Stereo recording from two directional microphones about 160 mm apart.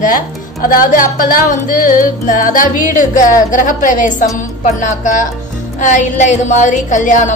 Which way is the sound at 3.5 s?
55° left (ahead or behind).